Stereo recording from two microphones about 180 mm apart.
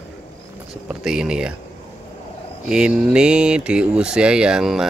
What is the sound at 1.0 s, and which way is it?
Speech, 5° right (ahead or behind).